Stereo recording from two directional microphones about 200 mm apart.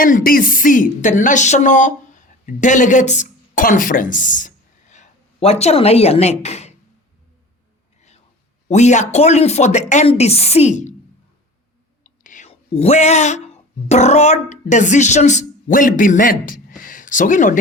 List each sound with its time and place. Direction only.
0.0 s a woman's voice: 45° left (ahead or behind)
8.6 s speech: 35° left (ahead or behind)
12.0 s speech: 40° left (ahead or behind)